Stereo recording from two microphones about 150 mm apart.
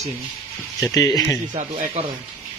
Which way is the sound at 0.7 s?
20° left (ahead or behind).